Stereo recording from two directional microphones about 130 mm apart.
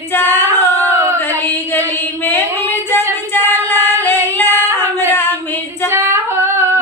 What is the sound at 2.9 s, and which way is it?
Female singing, 15° left (ahead or behind).